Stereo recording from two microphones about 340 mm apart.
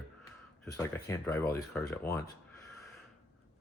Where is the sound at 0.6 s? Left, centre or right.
Centre.